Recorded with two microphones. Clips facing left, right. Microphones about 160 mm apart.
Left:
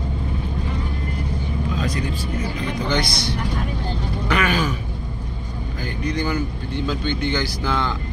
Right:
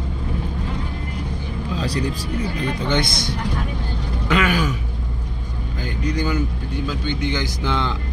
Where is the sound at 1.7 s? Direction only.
35° right (ahead or behind).